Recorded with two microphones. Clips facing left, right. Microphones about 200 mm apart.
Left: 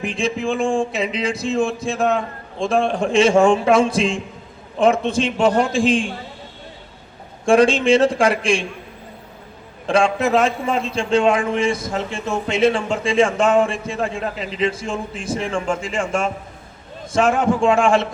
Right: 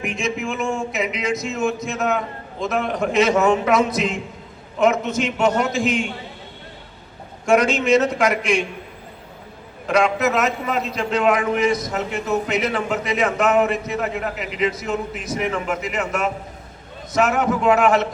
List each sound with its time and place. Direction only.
0.0 s a man's voice: 30° left (ahead or behind)
7.4 s a man's voice: 30° left (ahead or behind)
9.8 s a man's voice: 30° left (ahead or behind)